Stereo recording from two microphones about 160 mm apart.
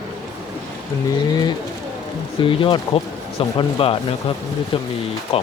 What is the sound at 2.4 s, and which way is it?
Speech, 30° left (ahead or behind).